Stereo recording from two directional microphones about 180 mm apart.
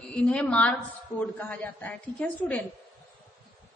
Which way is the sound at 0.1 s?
5° left (ahead or behind).